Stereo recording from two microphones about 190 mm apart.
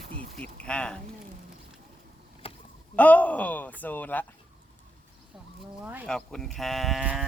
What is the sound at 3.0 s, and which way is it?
Speech, 10° left (ahead or behind).